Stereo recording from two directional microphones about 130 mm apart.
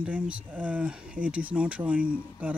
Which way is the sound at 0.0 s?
10° right (ahead or behind).